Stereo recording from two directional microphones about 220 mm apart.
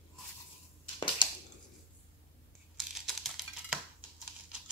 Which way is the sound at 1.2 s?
20° left (ahead or behind).